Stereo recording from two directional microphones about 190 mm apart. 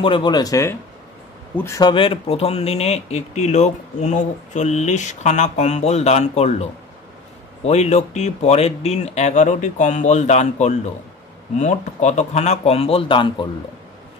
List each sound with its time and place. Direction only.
0.0 s speech: 25° left (ahead or behind)